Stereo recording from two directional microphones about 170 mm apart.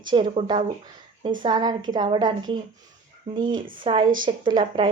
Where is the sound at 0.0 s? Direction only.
25° right (ahead or behind).